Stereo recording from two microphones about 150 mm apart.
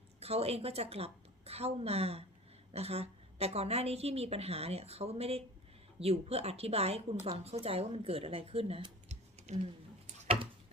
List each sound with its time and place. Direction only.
0.2 s a woman's voice: 45° right (ahead or behind)